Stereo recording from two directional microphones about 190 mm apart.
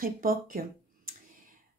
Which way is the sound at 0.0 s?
50° right (ahead or behind).